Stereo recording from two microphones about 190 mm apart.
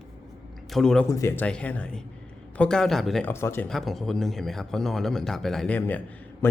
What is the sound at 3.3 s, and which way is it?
Speech, 15° left (ahead or behind).